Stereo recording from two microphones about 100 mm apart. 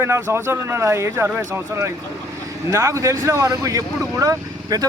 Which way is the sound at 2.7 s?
30° right (ahead or behind).